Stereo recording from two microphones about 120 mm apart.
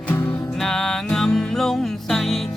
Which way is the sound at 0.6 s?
5° left (ahead or behind).